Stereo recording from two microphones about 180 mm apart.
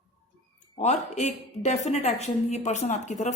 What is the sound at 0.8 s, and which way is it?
A woman's voice, 40° left (ahead or behind).